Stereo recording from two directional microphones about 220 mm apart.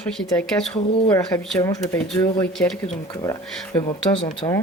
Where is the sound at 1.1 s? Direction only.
10° left (ahead or behind).